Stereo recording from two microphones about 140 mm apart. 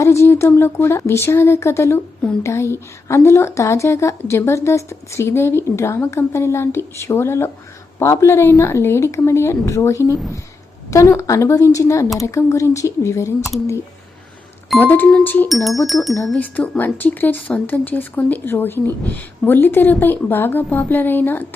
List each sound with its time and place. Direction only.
0.0 s a woman's voice: 20° left (ahead or behind)
14.8 s speech: 15° left (ahead or behind)
15.4 s speech: centre (ahead or behind)